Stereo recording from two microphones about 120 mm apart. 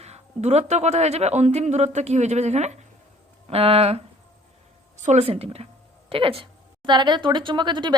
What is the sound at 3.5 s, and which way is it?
Speech, 55° right (ahead or behind).